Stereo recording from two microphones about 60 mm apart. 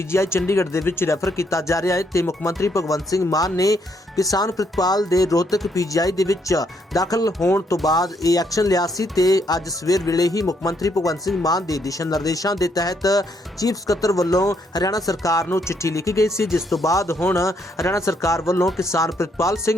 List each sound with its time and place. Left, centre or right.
0.1 s speech: left
5.7 s speech: left
11.4 s speech: left
15.5 s speech: left